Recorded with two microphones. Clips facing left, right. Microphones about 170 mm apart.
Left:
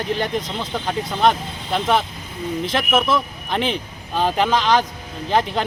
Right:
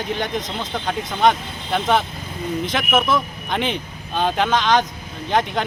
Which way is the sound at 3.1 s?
Centre (ahead or behind).